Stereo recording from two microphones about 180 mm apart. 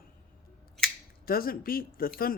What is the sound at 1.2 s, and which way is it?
Speech, 55° left (ahead or behind).